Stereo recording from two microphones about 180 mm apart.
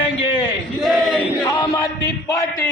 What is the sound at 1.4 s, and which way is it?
Chant, 20° left (ahead or behind).